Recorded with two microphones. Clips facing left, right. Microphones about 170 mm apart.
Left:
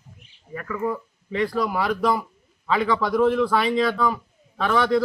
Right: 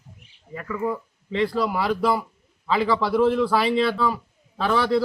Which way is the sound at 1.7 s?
5° right (ahead or behind).